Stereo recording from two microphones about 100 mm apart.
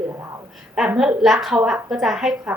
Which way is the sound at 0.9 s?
5° right (ahead or behind).